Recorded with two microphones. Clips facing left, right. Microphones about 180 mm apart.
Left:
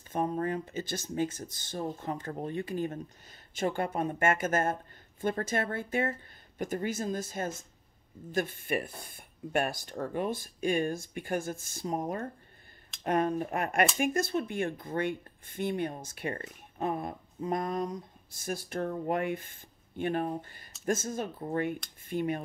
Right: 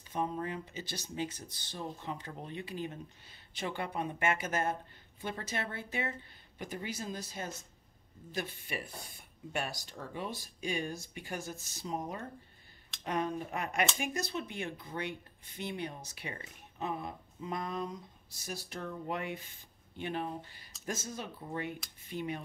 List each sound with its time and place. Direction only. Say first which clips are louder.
0.1 s speech: left 5 dB; 50° left (ahead or behind)